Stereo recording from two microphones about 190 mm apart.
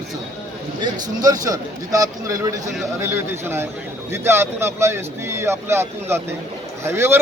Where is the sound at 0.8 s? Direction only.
20° right (ahead or behind).